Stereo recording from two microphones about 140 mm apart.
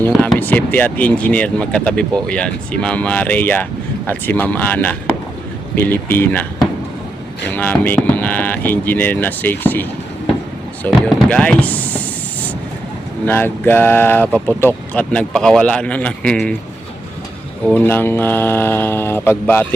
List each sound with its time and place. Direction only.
0.0 s speech: 10° left (ahead or behind)
7.5 s speech: 10° left (ahead or behind)
11.0 s a sound: 10° left (ahead or behind)
13.2 s speech: 15° left (ahead or behind)
17.7 s speech: 15° left (ahead or behind)